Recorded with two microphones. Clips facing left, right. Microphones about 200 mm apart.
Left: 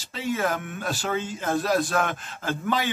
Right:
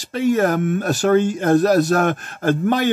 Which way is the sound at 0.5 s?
45° right (ahead or behind).